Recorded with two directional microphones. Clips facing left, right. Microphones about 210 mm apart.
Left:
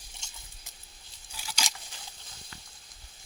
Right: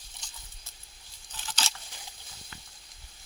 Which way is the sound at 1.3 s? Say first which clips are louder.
Even; 10° left (ahead or behind).